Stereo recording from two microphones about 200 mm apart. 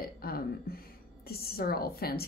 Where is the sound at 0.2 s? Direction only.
50° left (ahead or behind).